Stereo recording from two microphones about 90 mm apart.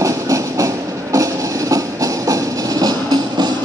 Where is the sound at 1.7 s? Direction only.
40° right (ahead or behind).